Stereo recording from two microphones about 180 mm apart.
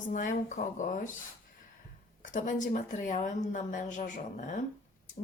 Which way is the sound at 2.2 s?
45° left (ahead or behind).